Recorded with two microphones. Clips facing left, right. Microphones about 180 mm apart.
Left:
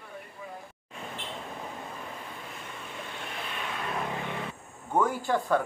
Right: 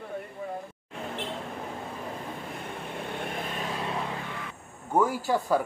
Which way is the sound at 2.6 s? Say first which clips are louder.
Right 6 dB; 60° right (ahead or behind).